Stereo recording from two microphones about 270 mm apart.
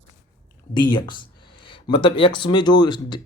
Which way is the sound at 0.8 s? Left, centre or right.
Centre.